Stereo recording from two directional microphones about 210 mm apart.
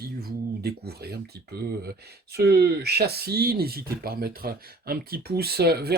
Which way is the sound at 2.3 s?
50° right (ahead or behind).